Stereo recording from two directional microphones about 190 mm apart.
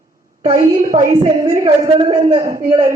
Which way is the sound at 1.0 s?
15° right (ahead or behind).